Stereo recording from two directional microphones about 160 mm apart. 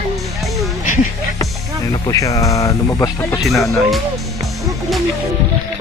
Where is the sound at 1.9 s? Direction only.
20° left (ahead or behind).